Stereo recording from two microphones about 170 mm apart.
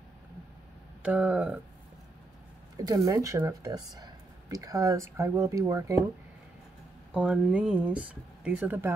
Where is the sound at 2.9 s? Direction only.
20° right (ahead or behind).